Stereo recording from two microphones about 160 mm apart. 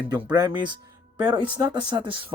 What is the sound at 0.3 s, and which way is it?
Speech, 25° right (ahead or behind).